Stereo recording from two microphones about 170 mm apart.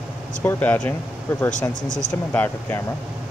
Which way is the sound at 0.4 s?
10° left (ahead or behind).